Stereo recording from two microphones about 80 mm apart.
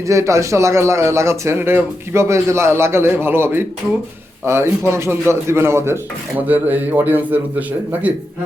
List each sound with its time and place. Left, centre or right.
0.1 s a man's voice: right
6.5 s a man's voice: right